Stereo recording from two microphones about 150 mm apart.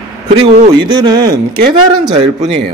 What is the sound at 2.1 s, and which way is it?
Speech, 50° right (ahead or behind).